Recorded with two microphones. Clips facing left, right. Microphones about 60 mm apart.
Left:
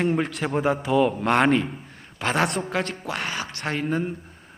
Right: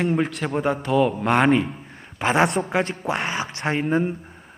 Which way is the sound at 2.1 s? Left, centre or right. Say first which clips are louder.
Right 4 dB; centre.